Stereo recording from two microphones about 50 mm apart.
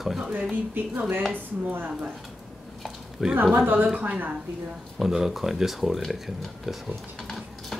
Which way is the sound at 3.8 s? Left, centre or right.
Right.